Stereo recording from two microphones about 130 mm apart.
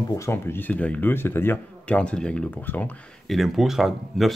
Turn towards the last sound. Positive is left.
turn(degrees=0)  # may be behind; listen again after turning